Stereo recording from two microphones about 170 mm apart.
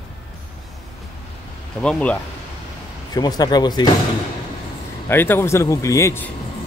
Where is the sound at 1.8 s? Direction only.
5° left (ahead or behind).